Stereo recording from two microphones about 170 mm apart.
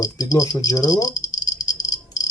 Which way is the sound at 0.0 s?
20° left (ahead or behind).